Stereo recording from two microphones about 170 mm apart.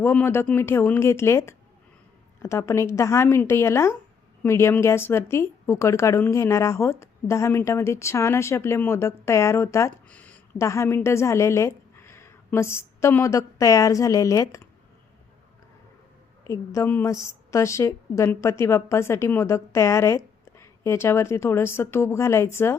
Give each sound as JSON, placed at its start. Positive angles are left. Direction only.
{"t": 0.0, "sound": "a woman's voice", "side_deg": 10}
{"t": 16.5, "sound": "a woman's voice", "side_deg": 15}